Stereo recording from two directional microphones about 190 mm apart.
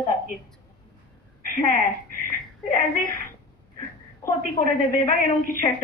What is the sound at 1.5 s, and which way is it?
Speech, 45° left (ahead or behind).